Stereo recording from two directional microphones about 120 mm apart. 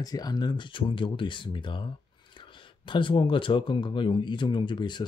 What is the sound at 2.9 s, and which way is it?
Speech, 45° left (ahead or behind).